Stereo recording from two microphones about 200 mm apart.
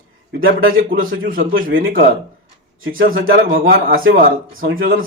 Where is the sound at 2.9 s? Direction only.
45° right (ahead or behind).